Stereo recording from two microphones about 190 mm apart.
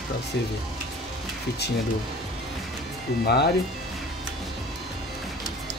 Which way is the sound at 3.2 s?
60° left (ahead or behind).